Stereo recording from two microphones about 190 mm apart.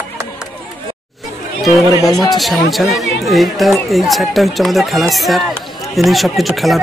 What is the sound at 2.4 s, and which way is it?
Speech, centre (ahead or behind).